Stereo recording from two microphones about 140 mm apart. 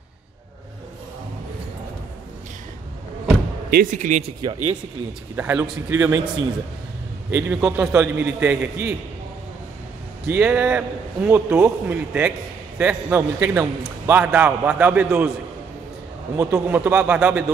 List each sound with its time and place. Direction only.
3.7 s speech: 65° right (ahead or behind)
4.2 s speech: 40° right (ahead or behind)
5.3 s a man's voice: 15° right (ahead or behind)
7.2 s a man's voice: 15° right (ahead or behind)
10.2 s a man's voice: 10° right (ahead or behind)
16.3 s a man's voice: 20° right (ahead or behind)